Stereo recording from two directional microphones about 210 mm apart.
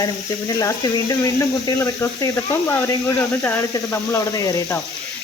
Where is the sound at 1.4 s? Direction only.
15° left (ahead or behind).